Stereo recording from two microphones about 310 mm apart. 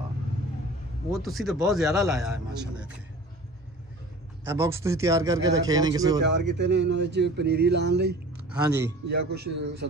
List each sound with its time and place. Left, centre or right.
1.1 s a man's voice: centre
4.5 s speech: centre
6.2 s speech: right